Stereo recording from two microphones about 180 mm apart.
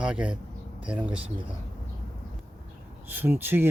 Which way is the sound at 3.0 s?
10° right (ahead or behind).